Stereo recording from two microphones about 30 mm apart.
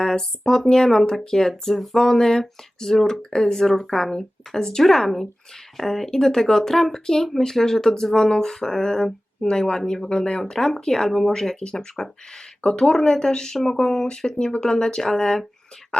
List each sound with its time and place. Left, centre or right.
0.0 s speech: centre
2.0 s speech: centre
10.5 s speech: centre
11.6 s speech: left
12.7 s speech: centre
15.0 s speech: centre